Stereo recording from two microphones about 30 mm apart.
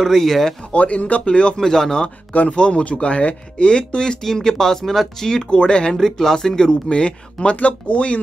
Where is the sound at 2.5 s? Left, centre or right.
Left.